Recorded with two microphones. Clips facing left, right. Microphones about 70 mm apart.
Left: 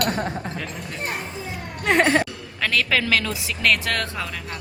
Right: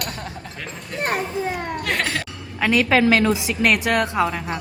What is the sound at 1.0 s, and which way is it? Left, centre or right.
Speech, right.